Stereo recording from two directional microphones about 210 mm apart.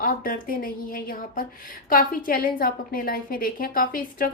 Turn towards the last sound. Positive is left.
turn(degrees=40)  # may be behind; listen again after turning